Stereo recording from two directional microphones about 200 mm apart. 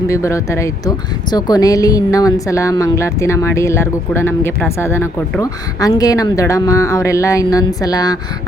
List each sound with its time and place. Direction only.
0.1 s speech: 15° left (ahead or behind)